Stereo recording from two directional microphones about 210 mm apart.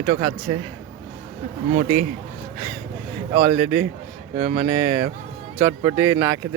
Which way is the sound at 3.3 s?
35° right (ahead or behind).